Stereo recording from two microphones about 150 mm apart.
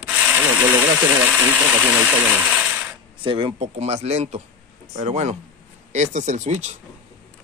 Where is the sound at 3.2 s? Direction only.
35° right (ahead or behind).